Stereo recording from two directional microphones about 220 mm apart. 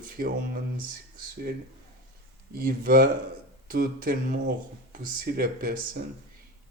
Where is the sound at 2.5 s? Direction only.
40° right (ahead or behind).